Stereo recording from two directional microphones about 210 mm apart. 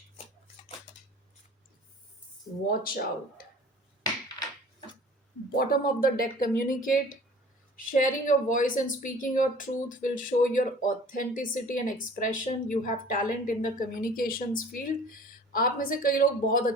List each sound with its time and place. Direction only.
2.6 s speech: 45° left (ahead or behind)
5.5 s speech: 45° left (ahead or behind)